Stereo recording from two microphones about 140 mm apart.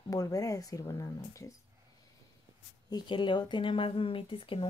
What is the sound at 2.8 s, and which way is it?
Speech, 30° left (ahead or behind).